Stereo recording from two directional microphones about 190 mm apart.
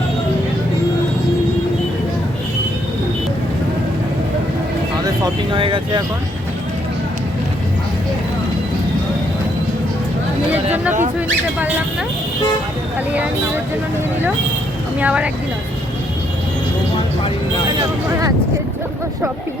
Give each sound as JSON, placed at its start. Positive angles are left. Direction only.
{"t": 5.0, "sound": "speech", "side_deg": -20}
{"t": 15.0, "sound": "speech", "side_deg": -5}